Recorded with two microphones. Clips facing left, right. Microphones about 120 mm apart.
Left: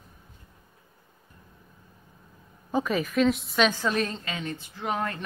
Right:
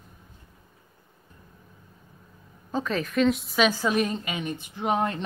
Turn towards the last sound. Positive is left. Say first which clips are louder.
# right 4 dB
turn(degrees=-20)  # may be behind; listen again after turning